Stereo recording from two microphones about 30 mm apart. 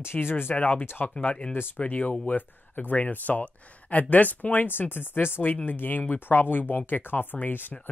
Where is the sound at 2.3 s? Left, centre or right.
Left.